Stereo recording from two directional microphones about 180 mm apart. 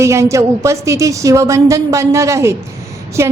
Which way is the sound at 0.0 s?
15° right (ahead or behind).